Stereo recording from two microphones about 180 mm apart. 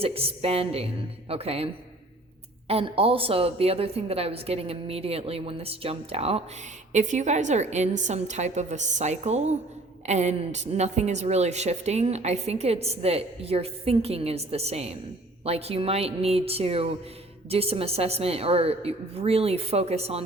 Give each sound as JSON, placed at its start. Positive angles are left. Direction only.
{"t": 0.0, "sound": "a woman's voice", "side_deg": -30}